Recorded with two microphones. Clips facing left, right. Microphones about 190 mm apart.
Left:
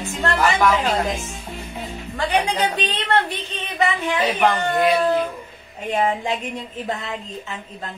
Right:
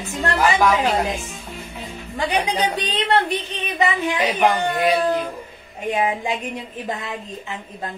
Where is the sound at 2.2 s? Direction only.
15° right (ahead or behind).